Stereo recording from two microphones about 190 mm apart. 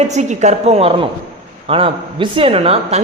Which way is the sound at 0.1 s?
40° right (ahead or behind).